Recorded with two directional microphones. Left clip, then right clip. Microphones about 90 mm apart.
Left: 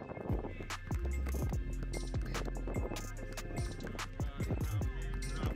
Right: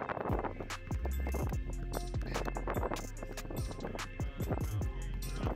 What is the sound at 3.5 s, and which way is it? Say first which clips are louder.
Music: right 3 dB; centre (ahead or behind).